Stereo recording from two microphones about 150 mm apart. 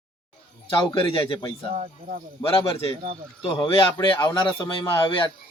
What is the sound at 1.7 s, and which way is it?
Speech, 50° right (ahead or behind).